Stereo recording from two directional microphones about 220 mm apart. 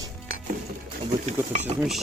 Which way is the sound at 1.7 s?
25° right (ahead or behind).